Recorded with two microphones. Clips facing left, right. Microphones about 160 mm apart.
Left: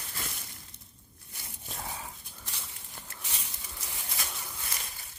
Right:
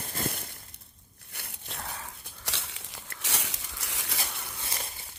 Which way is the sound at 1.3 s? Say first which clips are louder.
Right 2 dB; 65° right (ahead or behind).